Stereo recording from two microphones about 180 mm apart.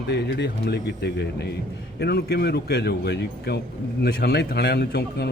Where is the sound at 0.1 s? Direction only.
70° left (ahead or behind).